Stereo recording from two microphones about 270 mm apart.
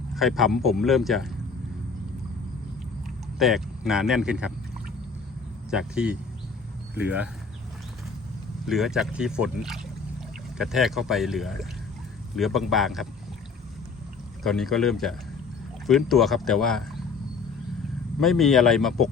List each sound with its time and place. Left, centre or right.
0.1 s speech: centre
3.3 s speech: centre
5.7 s speech: centre
8.6 s speech: centre
14.4 s speech: centre
18.2 s speech: centre